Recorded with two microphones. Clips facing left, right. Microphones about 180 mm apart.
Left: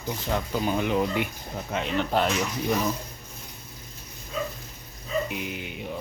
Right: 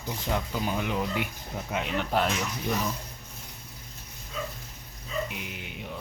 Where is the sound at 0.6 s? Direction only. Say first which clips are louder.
Left 8 dB; 5° right (ahead or behind).